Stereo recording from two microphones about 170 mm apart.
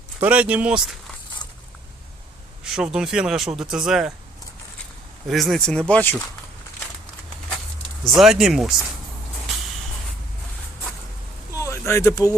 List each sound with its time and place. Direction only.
0.2 s speech: 5° right (ahead or behind)
2.6 s speech: 5° right (ahead or behind)
5.3 s speech: centre (ahead or behind)
8.0 s speech: centre (ahead or behind)
11.5 s a sound: 15° left (ahead or behind)